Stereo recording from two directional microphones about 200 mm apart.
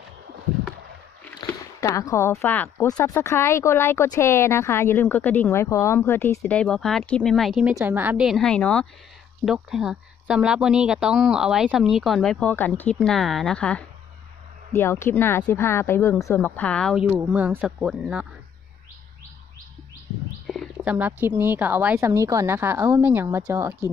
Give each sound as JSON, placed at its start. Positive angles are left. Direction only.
{"t": 1.4, "sound": "speech", "side_deg": 15}
{"t": 20.4, "sound": "a woman's voice", "side_deg": -5}